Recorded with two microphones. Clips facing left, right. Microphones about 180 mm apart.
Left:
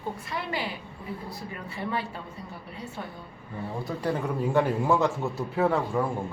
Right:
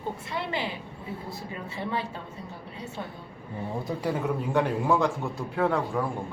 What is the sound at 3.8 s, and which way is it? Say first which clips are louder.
A man's voice: even; 10° right (ahead or behind).